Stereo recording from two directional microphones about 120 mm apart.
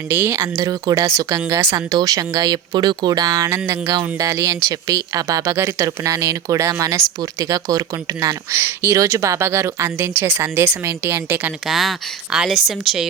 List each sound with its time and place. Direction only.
0.1 s speech: 20° right (ahead or behind)
11.6 s speech: centre (ahead or behind)